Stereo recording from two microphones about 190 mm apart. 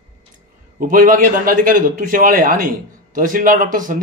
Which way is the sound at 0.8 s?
45° right (ahead or behind).